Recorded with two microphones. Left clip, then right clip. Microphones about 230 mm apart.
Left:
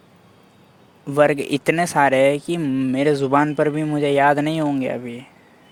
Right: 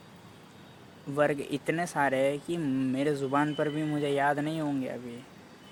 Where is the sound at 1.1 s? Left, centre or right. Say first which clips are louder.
Left 11 dB; left.